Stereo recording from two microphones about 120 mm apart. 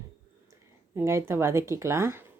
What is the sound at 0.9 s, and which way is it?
Speech, 20° right (ahead or behind).